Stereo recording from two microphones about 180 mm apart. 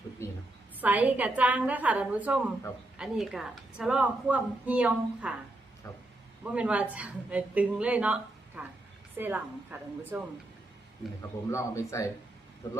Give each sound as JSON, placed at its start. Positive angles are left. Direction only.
{"t": 0.8, "sound": "a woman's voice", "side_deg": -10}
{"t": 6.4, "sound": "a woman's voice", "side_deg": -5}
{"t": 11.2, "sound": "speech", "side_deg": 15}